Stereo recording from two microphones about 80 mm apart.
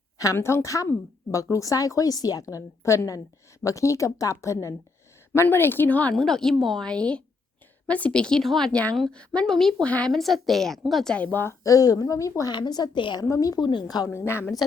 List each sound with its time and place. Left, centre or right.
0.3 s a woman's voice: left
6.1 s a woman's voice: centre
11.1 s speech: centre
11.6 s a woman's voice: left
12.5 s a woman's voice: left
13.2 s a woman's voice: left
13.6 s a woman's voice: left
13.8 s a woman's voice: left
14.1 s a woman's voice: left